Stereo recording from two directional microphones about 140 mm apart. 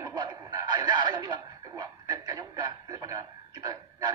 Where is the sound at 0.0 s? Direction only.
30° right (ahead or behind).